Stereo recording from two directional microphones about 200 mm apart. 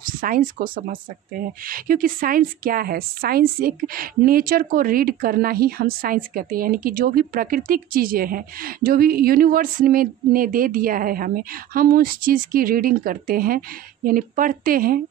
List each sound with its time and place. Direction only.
0.2 s a woman's voice: 45° right (ahead or behind)